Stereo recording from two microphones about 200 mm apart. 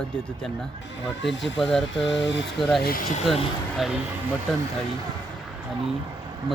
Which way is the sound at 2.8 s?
45° left (ahead or behind).